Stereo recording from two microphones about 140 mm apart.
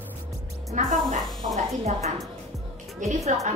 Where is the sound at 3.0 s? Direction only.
65° right (ahead or behind).